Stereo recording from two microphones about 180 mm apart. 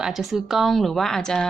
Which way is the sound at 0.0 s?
Centre (ahead or behind).